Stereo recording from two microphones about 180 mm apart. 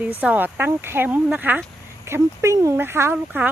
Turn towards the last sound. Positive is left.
turn(degrees=-10)  # may be behind; listen again after turning